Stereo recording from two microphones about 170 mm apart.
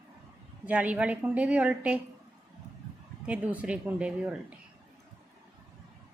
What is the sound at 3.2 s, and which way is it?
A woman's voice, 10° right (ahead or behind).